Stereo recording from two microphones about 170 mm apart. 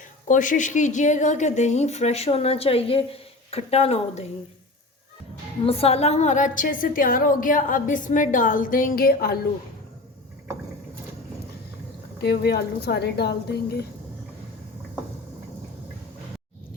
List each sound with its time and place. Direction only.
0.3 s a woman's voice: 50° left (ahead or behind)
5.6 s a woman's voice: 35° left (ahead or behind); by 9.4 s 65° left (ahead or behind)
12.2 s a woman's voice: 70° left (ahead or behind)